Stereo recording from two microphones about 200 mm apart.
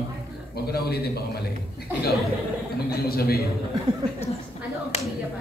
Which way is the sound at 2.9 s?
50° left (ahead or behind).